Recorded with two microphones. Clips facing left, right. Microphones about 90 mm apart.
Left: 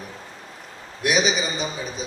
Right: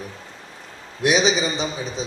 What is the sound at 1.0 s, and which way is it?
Speech, 30° right (ahead or behind).